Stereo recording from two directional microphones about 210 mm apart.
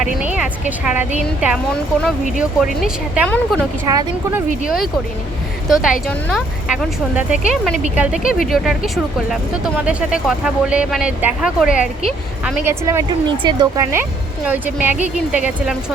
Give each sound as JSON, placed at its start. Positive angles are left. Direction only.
{"t": 0.0, "sound": "a woman's voice", "side_deg": -5}
{"t": 3.2, "sound": "speech", "side_deg": 5}
{"t": 3.8, "sound": "a woman's voice", "side_deg": -15}
{"t": 5.6, "sound": "speech", "side_deg": 0}
{"t": 12.6, "sound": "a woman's voice", "side_deg": -15}